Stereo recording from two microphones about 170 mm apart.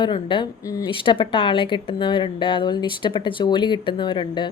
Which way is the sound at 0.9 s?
30° left (ahead or behind).